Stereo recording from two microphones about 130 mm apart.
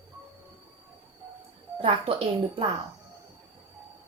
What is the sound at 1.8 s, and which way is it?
Speech, 40° right (ahead or behind).